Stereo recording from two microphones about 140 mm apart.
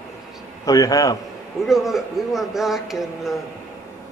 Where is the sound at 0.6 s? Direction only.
25° left (ahead or behind).